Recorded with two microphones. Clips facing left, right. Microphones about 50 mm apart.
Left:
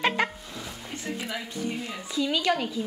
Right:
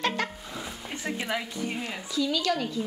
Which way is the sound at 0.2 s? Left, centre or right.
Centre.